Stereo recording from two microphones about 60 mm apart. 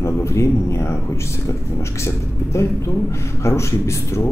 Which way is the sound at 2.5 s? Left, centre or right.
Left.